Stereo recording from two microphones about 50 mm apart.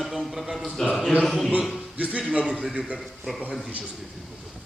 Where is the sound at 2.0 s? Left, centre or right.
Right.